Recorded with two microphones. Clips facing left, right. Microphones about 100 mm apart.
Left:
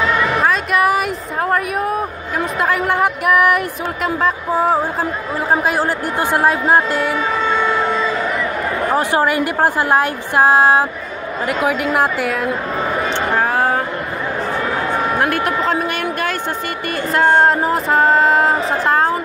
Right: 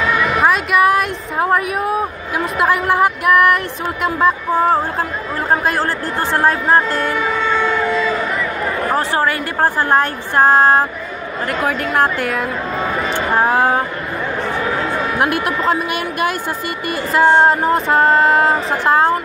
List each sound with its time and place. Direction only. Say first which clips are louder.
0.7 s a sound: right 2 dB; centre (ahead or behind)
5.5 s a woman's voice: even; 10° left (ahead or behind)
8.9 s a woman's voice: left 3 dB; 15° left (ahead or behind)
13.4 s speech: right 3 dB; 20° right (ahead or behind)
15.1 s a woman's voice: right 3 dB; 15° right (ahead or behind)
15.4 s speech: even; 5° right (ahead or behind)
16.9 s a sound: right 1 dB; centre (ahead or behind)